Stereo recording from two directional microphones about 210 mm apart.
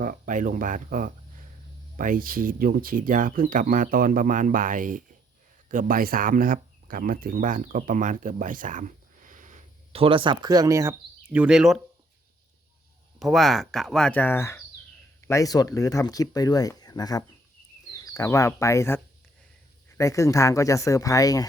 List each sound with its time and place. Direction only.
0.0 s speech: 40° right (ahead or behind); by 11.8 s centre (ahead or behind)
13.1 s speech: centre (ahead or behind); by 21.4 s 15° left (ahead or behind)